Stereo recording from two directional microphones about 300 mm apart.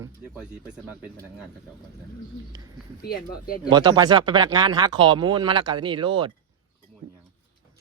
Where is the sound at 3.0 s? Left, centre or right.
Left.